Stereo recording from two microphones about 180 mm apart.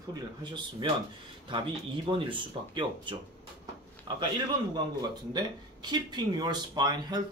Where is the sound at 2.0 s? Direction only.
25° right (ahead or behind).